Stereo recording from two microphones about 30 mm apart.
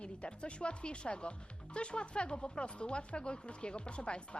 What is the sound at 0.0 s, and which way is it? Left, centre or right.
Speech, left.